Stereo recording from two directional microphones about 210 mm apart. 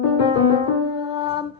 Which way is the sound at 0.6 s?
20° right (ahead or behind).